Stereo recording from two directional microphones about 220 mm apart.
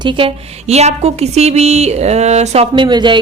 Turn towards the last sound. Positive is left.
turn(degrees=-20)  # may be behind; listen again after turning